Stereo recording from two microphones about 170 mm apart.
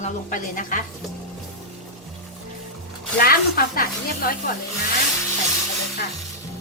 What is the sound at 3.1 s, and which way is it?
A woman's voice, 60° left (ahead or behind).